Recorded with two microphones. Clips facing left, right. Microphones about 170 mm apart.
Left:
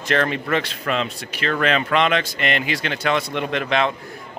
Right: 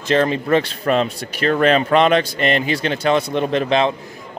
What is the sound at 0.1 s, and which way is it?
Speech, 30° right (ahead or behind).